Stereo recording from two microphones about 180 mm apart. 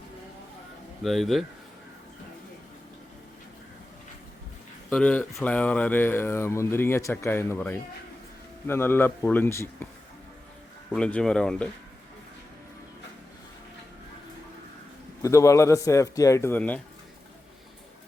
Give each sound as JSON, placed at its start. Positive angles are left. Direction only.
{"t": 1.0, "sound": "speech", "side_deg": 0}
{"t": 4.9, "sound": "speech", "side_deg": 5}
{"t": 10.9, "sound": "speech", "side_deg": 5}
{"t": 15.2, "sound": "speech", "side_deg": 15}